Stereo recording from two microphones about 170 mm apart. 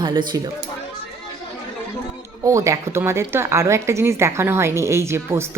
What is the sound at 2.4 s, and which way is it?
A woman's voice, 20° right (ahead or behind).